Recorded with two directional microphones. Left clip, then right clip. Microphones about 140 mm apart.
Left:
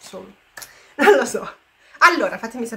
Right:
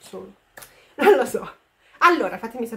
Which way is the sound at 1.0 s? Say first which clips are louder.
Left 2 dB; 15° right (ahead or behind).